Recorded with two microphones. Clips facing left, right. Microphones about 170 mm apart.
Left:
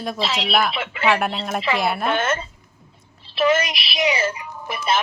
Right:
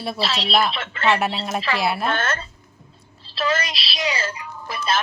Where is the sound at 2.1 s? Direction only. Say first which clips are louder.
Left 3 dB; 15° left (ahead or behind).